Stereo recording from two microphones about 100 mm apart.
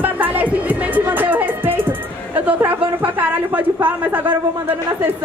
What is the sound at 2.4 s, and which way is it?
A woman's voice, 15° right (ahead or behind).